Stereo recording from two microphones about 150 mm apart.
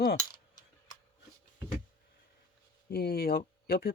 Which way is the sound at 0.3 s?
30° left (ahead or behind).